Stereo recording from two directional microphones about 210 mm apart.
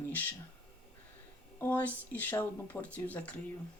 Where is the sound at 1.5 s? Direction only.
10° left (ahead or behind).